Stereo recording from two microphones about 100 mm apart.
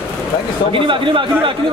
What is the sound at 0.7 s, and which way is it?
Speech, 60° right (ahead or behind).